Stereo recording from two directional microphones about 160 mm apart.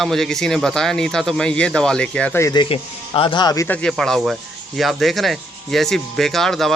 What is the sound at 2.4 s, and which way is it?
Speech, 20° left (ahead or behind).